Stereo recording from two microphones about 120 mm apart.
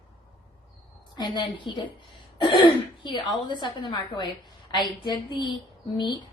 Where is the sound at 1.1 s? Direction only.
40° left (ahead or behind).